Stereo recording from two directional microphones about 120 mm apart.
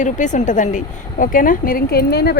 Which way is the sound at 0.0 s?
90° left.